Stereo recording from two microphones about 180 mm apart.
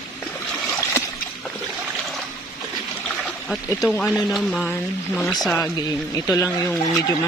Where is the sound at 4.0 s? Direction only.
Centre (ahead or behind).